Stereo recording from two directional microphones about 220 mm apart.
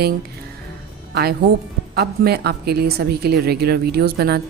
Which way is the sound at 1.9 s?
45° right (ahead or behind).